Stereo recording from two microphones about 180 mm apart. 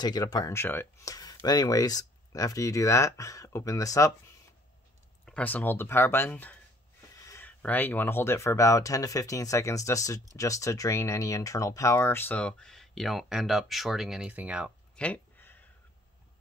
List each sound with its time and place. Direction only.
0.0 s speech: 25° left (ahead or behind)
5.2 s speech: 10° left (ahead or behind)
15.0 s a sound: 10° left (ahead or behind)